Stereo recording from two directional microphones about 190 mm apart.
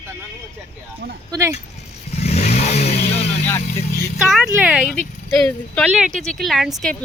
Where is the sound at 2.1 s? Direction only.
35° left (ahead or behind).